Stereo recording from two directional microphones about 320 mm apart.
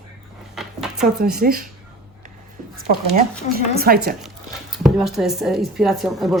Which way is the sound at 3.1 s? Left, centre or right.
Right.